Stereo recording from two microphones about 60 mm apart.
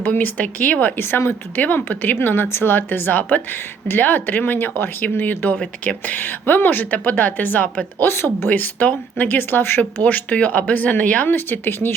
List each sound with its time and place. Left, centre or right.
0.0 s speech: left
0.9 s speech: left
5.5 s speech: centre
6.1 s speech: left
8.0 s speech: left
8.5 s speech: left